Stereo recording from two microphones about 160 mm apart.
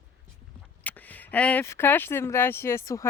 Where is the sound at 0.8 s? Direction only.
10° left (ahead or behind).